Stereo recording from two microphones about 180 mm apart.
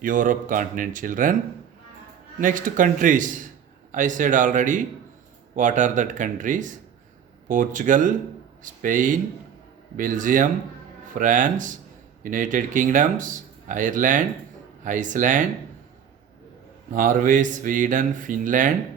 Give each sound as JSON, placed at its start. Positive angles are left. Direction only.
{"t": 0.0, "sound": "speech", "side_deg": -45}
{"t": 2.4, "sound": "speech", "side_deg": -50}
{"t": 16.9, "sound": "speech", "side_deg": -50}